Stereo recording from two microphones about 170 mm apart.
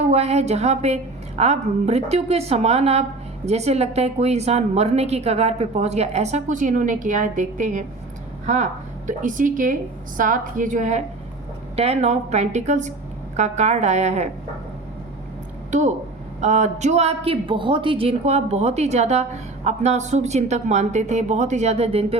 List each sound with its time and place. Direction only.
0.1 s a woman's voice: 40° right (ahead or behind)
15.7 s a woman's voice: 45° right (ahead or behind)